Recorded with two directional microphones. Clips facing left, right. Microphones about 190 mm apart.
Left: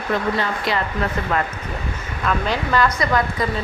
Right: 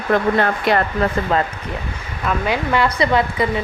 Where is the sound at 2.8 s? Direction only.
25° right (ahead or behind).